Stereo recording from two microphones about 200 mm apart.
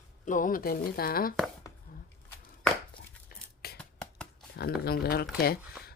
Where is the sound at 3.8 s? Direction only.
5° left (ahead or behind).